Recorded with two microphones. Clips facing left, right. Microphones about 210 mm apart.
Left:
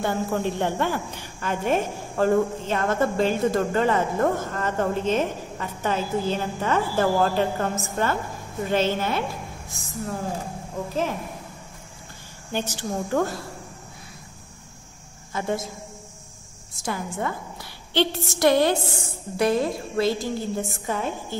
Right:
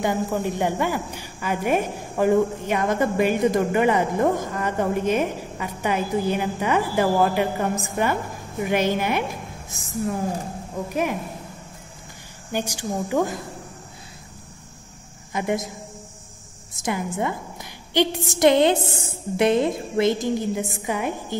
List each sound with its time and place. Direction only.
0.0 s a woman's voice: 15° right (ahead or behind)
12.5 s a woman's voice: 15° right (ahead or behind)
15.3 s a woman's voice: 15° right (ahead or behind)
16.7 s a woman's voice: 20° right (ahead or behind)